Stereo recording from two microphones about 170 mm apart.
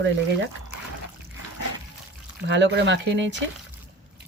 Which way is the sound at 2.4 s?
90° right.